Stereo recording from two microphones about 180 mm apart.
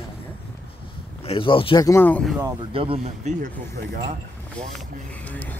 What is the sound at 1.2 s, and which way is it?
Speech, 30° left (ahead or behind).